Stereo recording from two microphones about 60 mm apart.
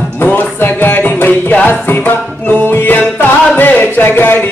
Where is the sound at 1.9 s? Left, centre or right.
Left.